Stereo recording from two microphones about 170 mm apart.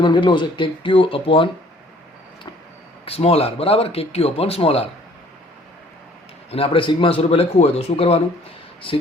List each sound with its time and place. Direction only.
0.0 s speech: 25° left (ahead or behind)
3.1 s speech: 35° left (ahead or behind)
6.5 s speech: 30° left (ahead or behind)